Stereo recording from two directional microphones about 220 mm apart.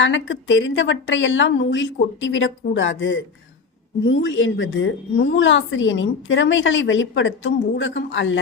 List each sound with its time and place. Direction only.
0.0 s a woman's voice: 55° left (ahead or behind)